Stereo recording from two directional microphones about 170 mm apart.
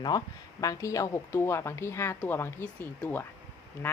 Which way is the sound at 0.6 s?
20° left (ahead or behind).